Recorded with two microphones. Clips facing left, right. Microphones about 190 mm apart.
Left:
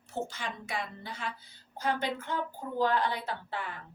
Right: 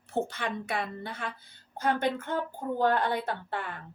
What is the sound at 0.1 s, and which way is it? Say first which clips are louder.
A woman's voice: right 5 dB; 60° right (ahead or behind).